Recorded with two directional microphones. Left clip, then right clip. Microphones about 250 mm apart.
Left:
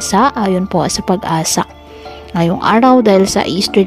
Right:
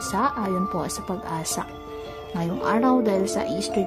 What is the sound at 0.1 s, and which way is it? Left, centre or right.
A woman's voice, left.